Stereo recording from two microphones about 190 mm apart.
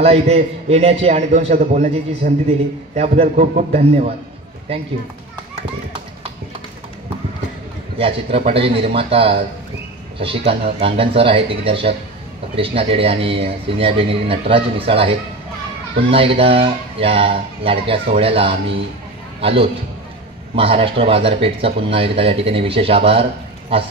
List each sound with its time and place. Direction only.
0.0 s a man's voice: 30° right (ahead or behind)
8.0 s speech: 30° right (ahead or behind)